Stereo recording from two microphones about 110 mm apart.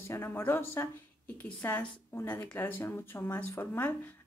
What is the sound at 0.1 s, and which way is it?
A woman's voice, 20° left (ahead or behind).